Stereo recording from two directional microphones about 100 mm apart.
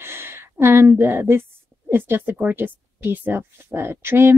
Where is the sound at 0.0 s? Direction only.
25° right (ahead or behind).